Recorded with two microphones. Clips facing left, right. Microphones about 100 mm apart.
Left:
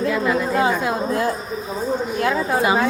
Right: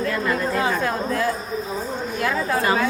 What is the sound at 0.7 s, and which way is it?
Speech, 15° left (ahead or behind).